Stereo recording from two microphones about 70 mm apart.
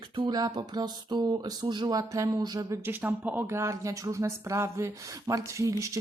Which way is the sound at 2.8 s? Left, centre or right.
Right.